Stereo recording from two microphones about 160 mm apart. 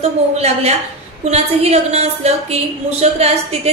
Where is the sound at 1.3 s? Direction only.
40° right (ahead or behind).